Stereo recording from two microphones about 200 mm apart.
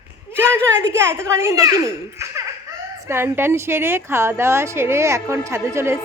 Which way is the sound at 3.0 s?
10° right (ahead or behind).